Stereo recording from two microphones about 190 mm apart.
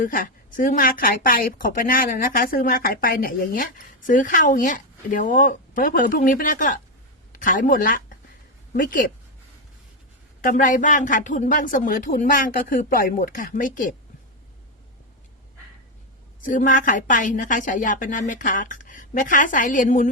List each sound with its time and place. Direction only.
0.0 s a woman's voice: 45° left (ahead or behind)
10.4 s speech: 45° left (ahead or behind)
16.4 s speech: 45° left (ahead or behind)